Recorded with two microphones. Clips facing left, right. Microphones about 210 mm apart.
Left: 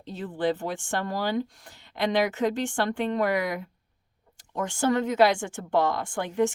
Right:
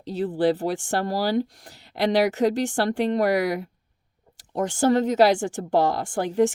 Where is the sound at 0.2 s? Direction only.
35° right (ahead or behind).